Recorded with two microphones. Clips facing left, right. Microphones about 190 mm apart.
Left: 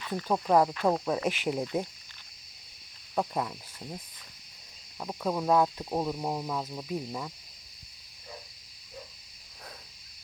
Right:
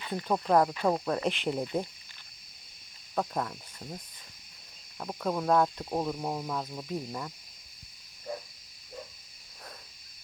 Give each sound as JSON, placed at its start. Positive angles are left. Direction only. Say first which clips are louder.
{"t": 0.3, "sound": "speech", "louder": "left 1 dB", "side_deg": 5}
{"t": 3.2, "sound": "cricket", "louder": "left 1 dB", "side_deg": 5}
{"t": 4.9, "sound": "speech", "louder": "left 1 dB", "side_deg": 5}
{"t": 8.3, "sound": "frog", "louder": "right 9 dB", "side_deg": -50}